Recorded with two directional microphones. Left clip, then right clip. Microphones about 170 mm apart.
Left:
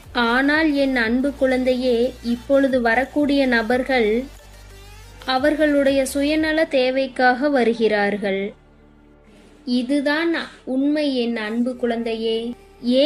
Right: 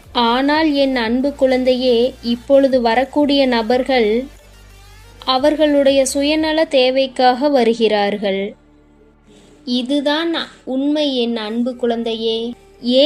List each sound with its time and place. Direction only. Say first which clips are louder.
0.1 s a woman's voice: right 3 dB; 25° right (ahead or behind)
5.2 s a woman's voice: right 4 dB; 25° right (ahead or behind)
9.6 s a woman's voice: right 3 dB; 30° right (ahead or behind)